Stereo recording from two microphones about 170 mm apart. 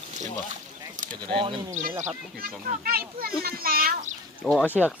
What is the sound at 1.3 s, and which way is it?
Speech, 30° right (ahead or behind).